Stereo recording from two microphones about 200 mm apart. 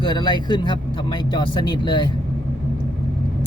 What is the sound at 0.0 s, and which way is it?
Speech, 20° left (ahead or behind).